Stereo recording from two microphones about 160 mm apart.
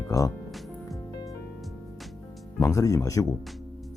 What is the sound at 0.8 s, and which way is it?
Music, 20° left (ahead or behind).